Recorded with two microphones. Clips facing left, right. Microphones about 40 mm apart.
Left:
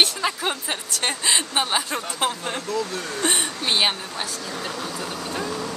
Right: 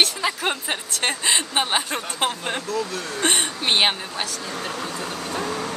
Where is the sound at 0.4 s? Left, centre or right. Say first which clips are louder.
Right 1 dB; right.